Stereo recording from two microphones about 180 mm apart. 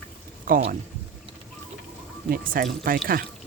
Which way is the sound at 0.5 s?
50° right (ahead or behind).